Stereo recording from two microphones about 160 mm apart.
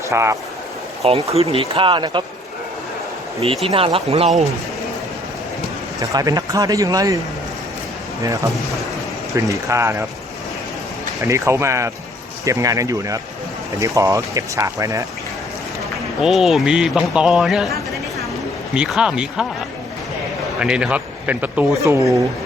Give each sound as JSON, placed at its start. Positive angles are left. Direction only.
{"t": 0.1, "sound": "speech", "side_deg": -20}
{"t": 1.3, "sound": "speech", "side_deg": -40}
{"t": 3.4, "sound": "speech", "side_deg": -40}
{"t": 6.0, "sound": "speech", "side_deg": -25}
{"t": 9.3, "sound": "speech", "side_deg": -20}
{"t": 11.2, "sound": "speech", "side_deg": -15}
{"t": 16.2, "sound": "speech", "side_deg": 0}
{"t": 17.7, "sound": "a sound", "side_deg": 20}
{"t": 18.7, "sound": "speech", "side_deg": -5}
{"t": 20.6, "sound": "speech", "side_deg": -5}